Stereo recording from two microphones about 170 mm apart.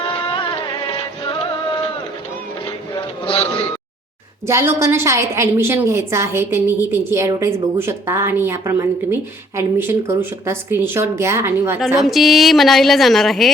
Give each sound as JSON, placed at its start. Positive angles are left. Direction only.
{"t": 0.1, "sound": "music", "side_deg": 30}
{"t": 2.6, "sound": "a sound", "side_deg": 30}
{"t": 4.4, "sound": "a woman's voice", "side_deg": -15}
{"t": 11.9, "sound": "a woman's voice", "side_deg": 0}